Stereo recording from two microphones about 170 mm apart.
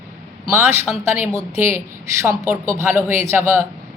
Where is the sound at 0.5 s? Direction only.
15° right (ahead or behind).